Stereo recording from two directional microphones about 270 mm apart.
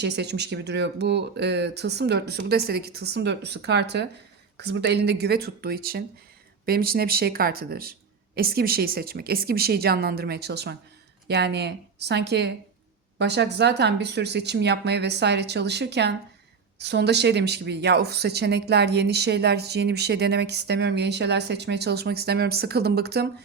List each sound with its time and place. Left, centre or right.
0.0 s speech: right